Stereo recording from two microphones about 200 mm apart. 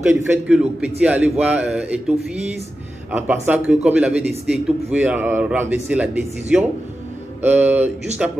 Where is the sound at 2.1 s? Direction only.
30° right (ahead or behind).